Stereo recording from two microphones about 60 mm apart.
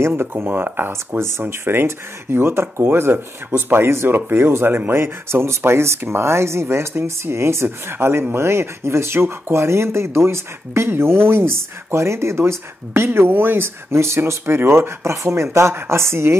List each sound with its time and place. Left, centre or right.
0.0 s speech: right
13.9 s speech: right